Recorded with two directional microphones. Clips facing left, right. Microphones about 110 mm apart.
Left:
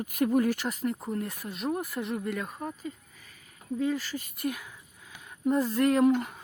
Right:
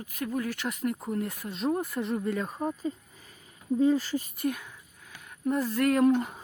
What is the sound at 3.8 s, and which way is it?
Speech, 20° right (ahead or behind).